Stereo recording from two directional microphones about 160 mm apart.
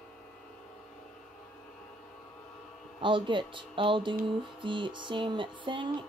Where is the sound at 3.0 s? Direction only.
30° right (ahead or behind).